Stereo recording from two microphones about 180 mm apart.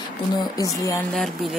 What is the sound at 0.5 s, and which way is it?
Speech, 20° left (ahead or behind).